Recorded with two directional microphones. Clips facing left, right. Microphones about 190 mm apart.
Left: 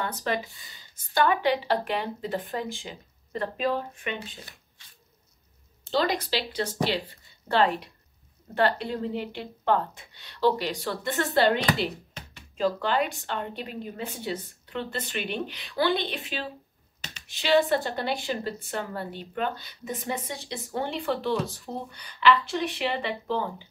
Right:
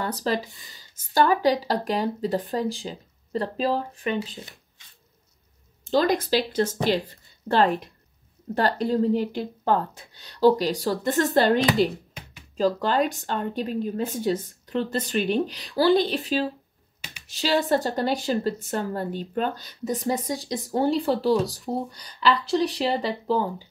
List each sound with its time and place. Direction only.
0.0 s a woman's voice: 35° right (ahead or behind)
5.9 s a woman's voice: 45° right (ahead or behind)